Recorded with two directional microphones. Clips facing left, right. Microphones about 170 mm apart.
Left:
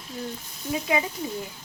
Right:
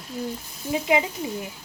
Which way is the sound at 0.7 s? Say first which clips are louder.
Right 3 dB; 20° right (ahead or behind).